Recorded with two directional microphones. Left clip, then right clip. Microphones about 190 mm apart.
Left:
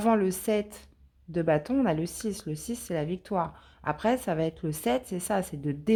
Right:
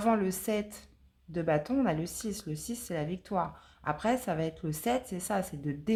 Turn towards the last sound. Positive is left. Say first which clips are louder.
# left 3 dB
turn(degrees=35)  # may be behind; listen again after turning